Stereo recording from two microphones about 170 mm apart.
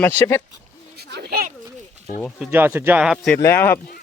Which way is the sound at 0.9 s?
70° right (ahead or behind).